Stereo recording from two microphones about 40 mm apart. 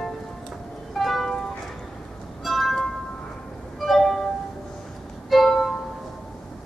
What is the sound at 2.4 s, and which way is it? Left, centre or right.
Music, centre.